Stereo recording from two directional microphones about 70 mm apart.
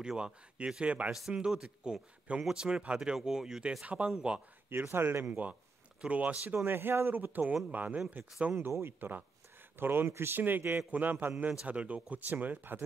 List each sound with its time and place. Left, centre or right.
0.0 s speech: centre
1.3 s speech: centre
3.8 s speech: centre
4.8 s speech: right
5.3 s speech: centre
6.4 s speech: right
8.5 s speech: right